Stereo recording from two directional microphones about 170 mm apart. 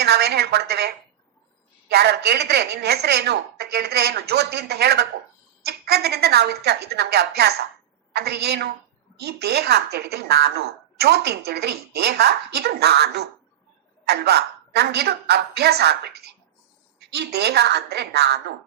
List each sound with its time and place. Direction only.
0.0 s a woman's voice: 75° right (ahead or behind)
1.9 s a woman's voice: 75° right (ahead or behind)